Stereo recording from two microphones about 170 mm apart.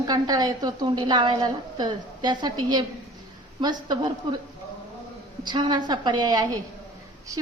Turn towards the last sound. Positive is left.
turn(degrees=-20)  # may be behind; listen again after turning